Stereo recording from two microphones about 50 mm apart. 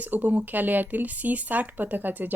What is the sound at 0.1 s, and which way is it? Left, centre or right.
Speech, right.